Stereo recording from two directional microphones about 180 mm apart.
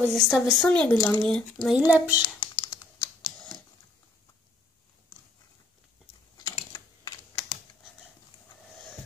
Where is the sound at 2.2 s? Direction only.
25° left (ahead or behind).